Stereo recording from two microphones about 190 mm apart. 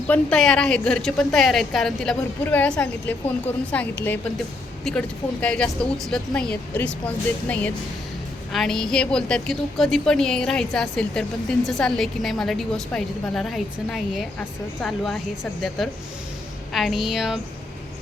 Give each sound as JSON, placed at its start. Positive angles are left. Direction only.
{"t": 0.1, "sound": "a woman's voice", "side_deg": 5}
{"t": 16.7, "sound": "a woman's voice", "side_deg": 0}